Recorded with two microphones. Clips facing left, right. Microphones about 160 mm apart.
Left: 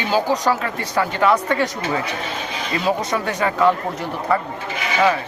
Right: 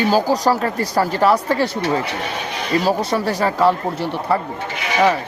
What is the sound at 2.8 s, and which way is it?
Speech, 35° right (ahead or behind).